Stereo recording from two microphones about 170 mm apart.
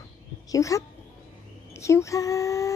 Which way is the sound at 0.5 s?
20° left (ahead or behind).